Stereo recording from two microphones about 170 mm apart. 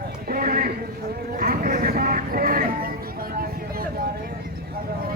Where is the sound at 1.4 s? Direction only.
55° right (ahead or behind).